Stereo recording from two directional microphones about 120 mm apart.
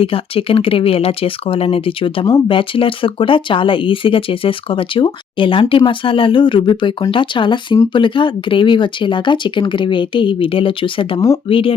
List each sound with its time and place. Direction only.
0.0 s speech: 50° left (ahead or behind)